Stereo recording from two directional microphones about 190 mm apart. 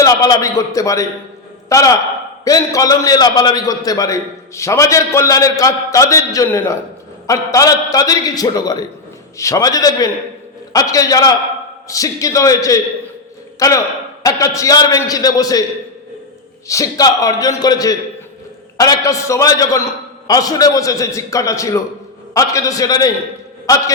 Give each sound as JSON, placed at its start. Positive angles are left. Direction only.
{"t": 0.0, "sound": "a man's voice", "side_deg": 20}
{"t": 16.6, "sound": "a man's voice", "side_deg": 15}